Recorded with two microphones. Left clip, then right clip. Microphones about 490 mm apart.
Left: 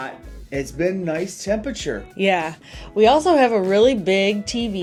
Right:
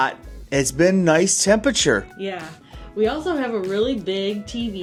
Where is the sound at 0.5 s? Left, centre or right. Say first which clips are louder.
Right 5 dB; right.